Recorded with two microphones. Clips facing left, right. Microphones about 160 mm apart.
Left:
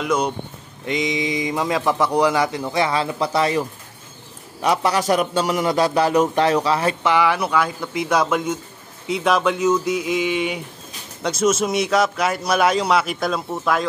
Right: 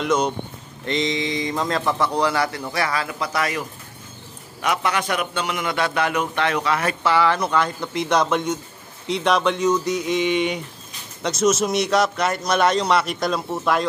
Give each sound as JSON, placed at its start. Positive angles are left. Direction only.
{"t": 0.0, "sound": "a man's voice", "side_deg": 10}
{"t": 7.0, "sound": "speech", "side_deg": 15}